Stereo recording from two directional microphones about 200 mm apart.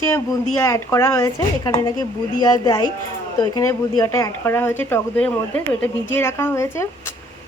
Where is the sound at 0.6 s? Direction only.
15° left (ahead or behind).